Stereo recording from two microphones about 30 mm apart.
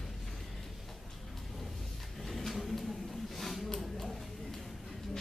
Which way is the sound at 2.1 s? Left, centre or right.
Centre.